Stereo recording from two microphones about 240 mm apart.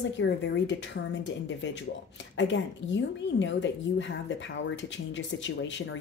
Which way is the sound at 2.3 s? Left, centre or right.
Left.